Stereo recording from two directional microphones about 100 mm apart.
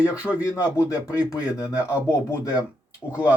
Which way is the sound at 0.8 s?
35° left (ahead or behind).